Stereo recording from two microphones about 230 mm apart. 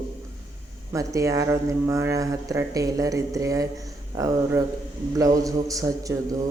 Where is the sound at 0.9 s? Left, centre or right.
Centre.